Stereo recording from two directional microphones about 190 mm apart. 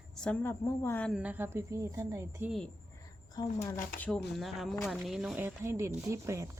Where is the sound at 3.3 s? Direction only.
15° left (ahead or behind).